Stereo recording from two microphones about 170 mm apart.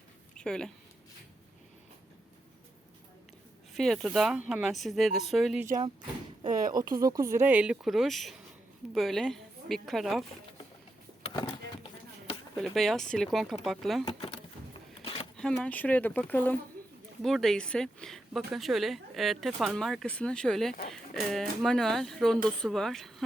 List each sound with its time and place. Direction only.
0.3 s speech: 5° left (ahead or behind)
3.8 s speech: centre (ahead or behind)
6.9 s a woman's voice: 20° right (ahead or behind); by 10.2 s centre (ahead or behind)
11.3 s a sound: 30° left (ahead or behind)
12.5 s speech: centre (ahead or behind)
14.0 s speech: 30° left (ahead or behind)
15.0 s a sound: 35° left (ahead or behind)
15.4 s speech: 5° left (ahead or behind)